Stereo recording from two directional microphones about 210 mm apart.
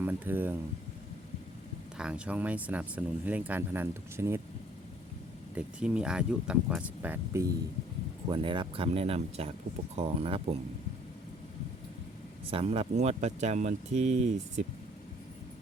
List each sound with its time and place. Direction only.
0.0 s speech: 10° right (ahead or behind)
2.0 s speech: 5° right (ahead or behind)
5.5 s speech: 5° right (ahead or behind)
8.3 s speech: 25° right (ahead or behind)
12.5 s speech: 25° right (ahead or behind)